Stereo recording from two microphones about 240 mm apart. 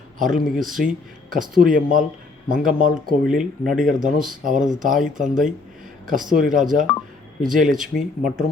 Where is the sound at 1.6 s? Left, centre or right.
Right.